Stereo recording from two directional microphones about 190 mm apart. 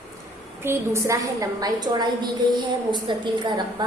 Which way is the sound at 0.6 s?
15° right (ahead or behind).